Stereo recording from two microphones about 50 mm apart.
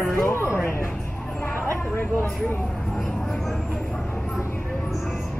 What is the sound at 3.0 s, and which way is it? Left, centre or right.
Speech, centre.